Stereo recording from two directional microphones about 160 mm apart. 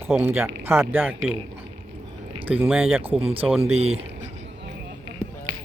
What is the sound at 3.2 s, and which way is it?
Speech, 35° right (ahead or behind).